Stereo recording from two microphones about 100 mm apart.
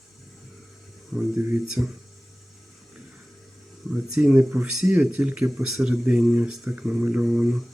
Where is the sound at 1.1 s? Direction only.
Centre (ahead or behind).